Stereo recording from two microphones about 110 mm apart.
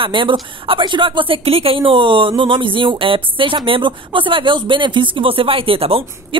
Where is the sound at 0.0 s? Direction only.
50° right (ahead or behind).